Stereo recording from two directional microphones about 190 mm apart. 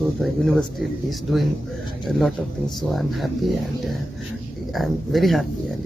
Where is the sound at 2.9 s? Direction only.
Centre (ahead or behind).